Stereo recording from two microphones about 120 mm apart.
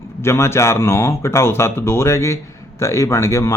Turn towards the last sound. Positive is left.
turn(degrees=25)  # may be behind; listen again after turning